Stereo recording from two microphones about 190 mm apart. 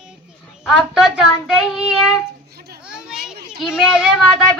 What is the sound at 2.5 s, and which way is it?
Children playing, 55° right (ahead or behind).